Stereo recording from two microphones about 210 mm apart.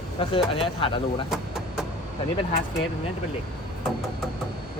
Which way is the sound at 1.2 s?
Centre (ahead or behind).